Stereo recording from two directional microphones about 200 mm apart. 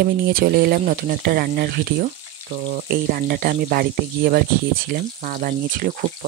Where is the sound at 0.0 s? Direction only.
50° right (ahead or behind).